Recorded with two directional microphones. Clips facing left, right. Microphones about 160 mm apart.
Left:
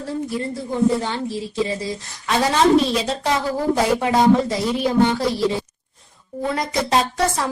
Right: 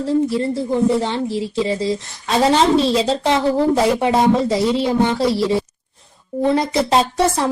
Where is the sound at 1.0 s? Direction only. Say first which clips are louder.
Right 4 dB; 25° right (ahead or behind).